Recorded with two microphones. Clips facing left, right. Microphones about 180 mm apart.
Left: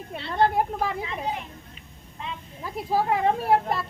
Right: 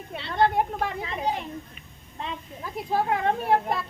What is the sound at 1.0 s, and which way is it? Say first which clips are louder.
Speech: right 2 dB; 35° right (ahead or behind).